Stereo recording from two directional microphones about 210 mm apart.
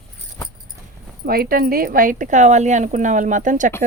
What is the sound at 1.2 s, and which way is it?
Speech, 45° right (ahead or behind).